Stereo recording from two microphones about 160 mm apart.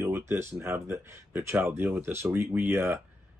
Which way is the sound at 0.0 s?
15° right (ahead or behind).